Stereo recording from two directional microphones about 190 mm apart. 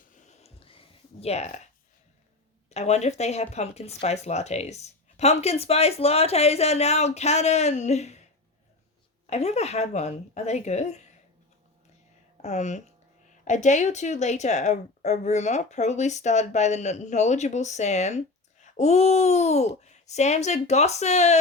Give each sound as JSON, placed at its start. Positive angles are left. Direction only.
{"t": 0.1, "sound": "a sound", "side_deg": 35}
{"t": 2.6, "sound": "speech", "side_deg": 35}
{"t": 9.2, "sound": "speech", "side_deg": 35}
{"t": 12.4, "sound": "speech", "side_deg": 35}